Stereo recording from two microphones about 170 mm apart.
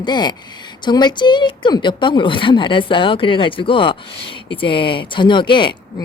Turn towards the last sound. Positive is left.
turn(degrees=30)  # may be behind; listen again after turning